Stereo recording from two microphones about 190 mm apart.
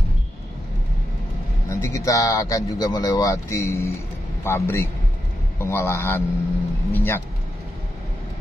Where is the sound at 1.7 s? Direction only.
15° left (ahead or behind).